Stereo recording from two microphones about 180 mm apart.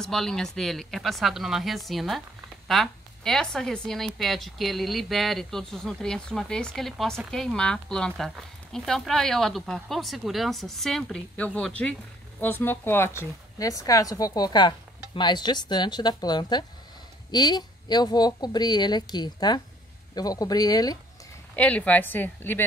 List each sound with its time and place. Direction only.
0.0 s speech: centre (ahead or behind); by 21.0 s 20° left (ahead or behind)
21.5 s a woman's voice: 10° left (ahead or behind)